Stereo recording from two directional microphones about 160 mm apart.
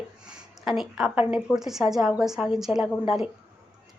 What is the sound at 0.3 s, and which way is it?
A woman's voice, 5° right (ahead or behind).